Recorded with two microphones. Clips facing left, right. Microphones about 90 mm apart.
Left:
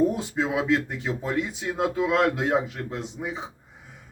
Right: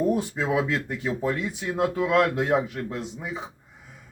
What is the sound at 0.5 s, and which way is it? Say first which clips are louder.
Speech: even; 20° left (ahead or behind).